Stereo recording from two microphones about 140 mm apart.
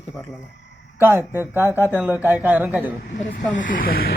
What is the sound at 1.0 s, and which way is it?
Speech, 15° right (ahead or behind).